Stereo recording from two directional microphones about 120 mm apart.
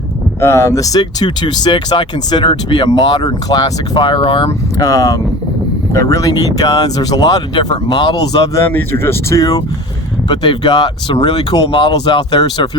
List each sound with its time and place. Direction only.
0.3 s speech: 25° left (ahead or behind); by 4.4 s 45° left (ahead or behind)
4.4 s speech: 30° left (ahead or behind)
8.7 s speech: 20° left (ahead or behind)
10.2 s speech: 40° left (ahead or behind)